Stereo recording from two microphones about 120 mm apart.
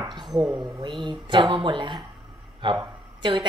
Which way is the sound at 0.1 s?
35° right (ahead or behind).